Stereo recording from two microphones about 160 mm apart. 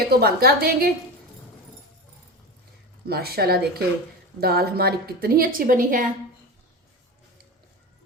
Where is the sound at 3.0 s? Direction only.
75° right (ahead or behind); by 6.0 s 60° right (ahead or behind).